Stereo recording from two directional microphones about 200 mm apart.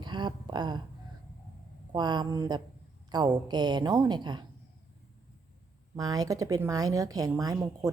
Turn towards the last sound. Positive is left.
turn(degrees=-20)  # may be behind; listen again after turning